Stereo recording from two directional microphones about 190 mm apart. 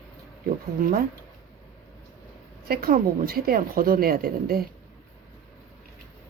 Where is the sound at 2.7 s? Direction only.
50° right (ahead or behind).